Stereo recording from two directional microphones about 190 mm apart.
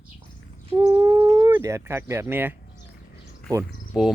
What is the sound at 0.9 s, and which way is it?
Howl, 20° right (ahead or behind).